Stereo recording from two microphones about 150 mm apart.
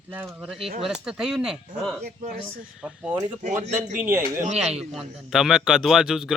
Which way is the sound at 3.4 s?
55° right (ahead or behind).